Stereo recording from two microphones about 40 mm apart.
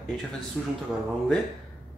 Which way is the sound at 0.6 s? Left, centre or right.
Right.